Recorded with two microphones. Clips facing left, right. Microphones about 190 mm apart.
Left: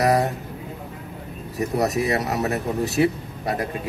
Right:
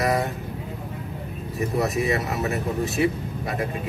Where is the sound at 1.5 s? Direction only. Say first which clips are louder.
Left 2 dB; 40° left (ahead or behind).